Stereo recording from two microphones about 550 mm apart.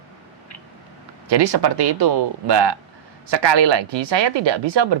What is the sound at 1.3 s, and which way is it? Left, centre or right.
Speech, right.